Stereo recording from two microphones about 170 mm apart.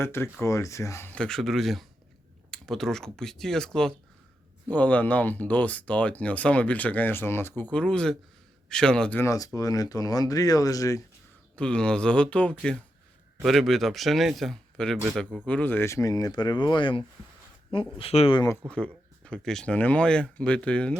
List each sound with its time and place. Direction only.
0.0 s speech: 15° left (ahead or behind)
11.5 s speech: 5° left (ahead or behind); by 18.4 s 35° left (ahead or behind)
18.7 s speech: 5° left (ahead or behind)